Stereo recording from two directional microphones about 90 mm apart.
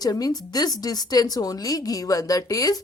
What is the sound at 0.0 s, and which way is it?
Speech, 45° left (ahead or behind).